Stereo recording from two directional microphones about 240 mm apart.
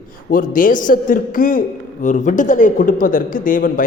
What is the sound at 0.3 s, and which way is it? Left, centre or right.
A man's voice, left.